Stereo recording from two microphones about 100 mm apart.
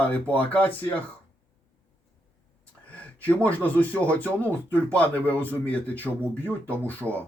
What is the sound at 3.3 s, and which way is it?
Speech, 15° left (ahead or behind).